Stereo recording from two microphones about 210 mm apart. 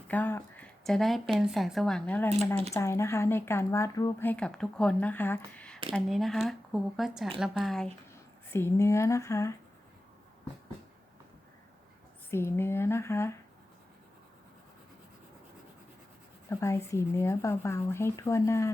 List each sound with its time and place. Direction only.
0.1 s speech: 10° left (ahead or behind)
8.5 s speech: 15° left (ahead or behind)
12.3 s speech: 10° left (ahead or behind)
16.5 s speech: 15° left (ahead or behind)